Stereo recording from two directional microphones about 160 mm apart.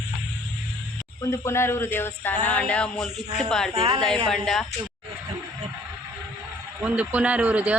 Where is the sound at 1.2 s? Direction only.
15° left (ahead or behind).